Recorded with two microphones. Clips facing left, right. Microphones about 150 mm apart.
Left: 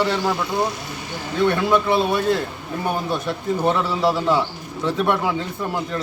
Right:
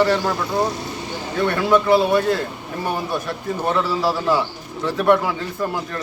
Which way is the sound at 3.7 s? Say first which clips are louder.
Right 2 dB; centre (ahead or behind).